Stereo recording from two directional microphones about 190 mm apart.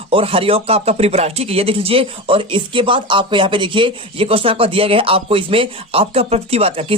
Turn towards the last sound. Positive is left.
turn(degrees=-30)  # may be behind; listen again after turning